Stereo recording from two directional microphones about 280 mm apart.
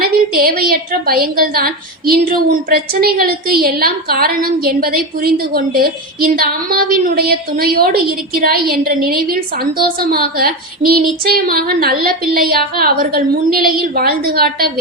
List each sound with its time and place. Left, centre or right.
0.0 s a woman's voice: right